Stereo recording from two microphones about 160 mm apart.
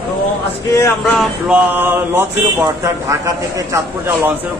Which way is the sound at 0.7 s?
15° left (ahead or behind).